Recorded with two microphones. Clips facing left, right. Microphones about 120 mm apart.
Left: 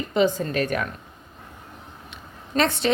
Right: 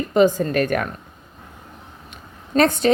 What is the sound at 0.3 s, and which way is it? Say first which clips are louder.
Speech: right 4 dB; 45° right (ahead or behind).